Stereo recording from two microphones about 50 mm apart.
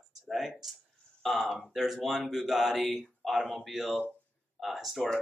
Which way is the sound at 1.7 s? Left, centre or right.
Centre.